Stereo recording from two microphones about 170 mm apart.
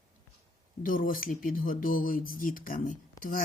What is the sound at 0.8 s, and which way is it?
A woman's voice, 55° left (ahead or behind).